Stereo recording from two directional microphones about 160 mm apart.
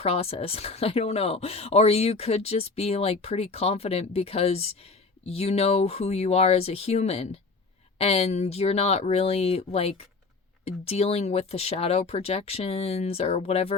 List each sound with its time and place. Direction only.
0.0 s speech: 40° left (ahead or behind)